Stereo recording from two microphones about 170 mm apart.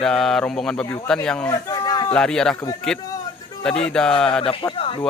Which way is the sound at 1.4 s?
20° left (ahead or behind).